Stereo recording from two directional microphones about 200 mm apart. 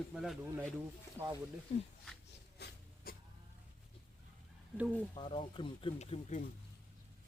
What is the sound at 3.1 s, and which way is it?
Vehicle, 50° left (ahead or behind).